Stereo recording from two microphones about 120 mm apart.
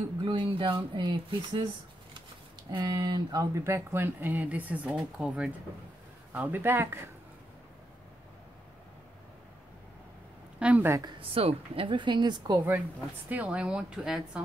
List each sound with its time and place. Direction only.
0.2 s speech: 45° right (ahead or behind)
2.7 s a woman's voice: 35° right (ahead or behind)
3.5 s speech: 20° right (ahead or behind)
10.6 s speech: 10° right (ahead or behind)
10.9 s a woman's voice: 30° right (ahead or behind)
11.1 s a woman's voice: 50° right (ahead or behind); by 12.6 s 35° right (ahead or behind)
13.3 s speech: 10° right (ahead or behind)